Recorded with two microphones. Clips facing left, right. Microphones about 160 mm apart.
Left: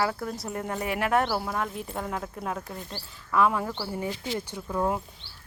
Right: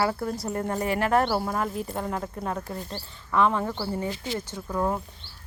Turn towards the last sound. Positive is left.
turn(degrees=5)  # may be behind; listen again after turning